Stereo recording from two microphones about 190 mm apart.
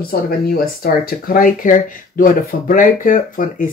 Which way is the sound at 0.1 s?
50° left (ahead or behind).